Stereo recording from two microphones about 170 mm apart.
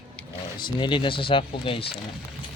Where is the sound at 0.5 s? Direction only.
25° left (ahead or behind).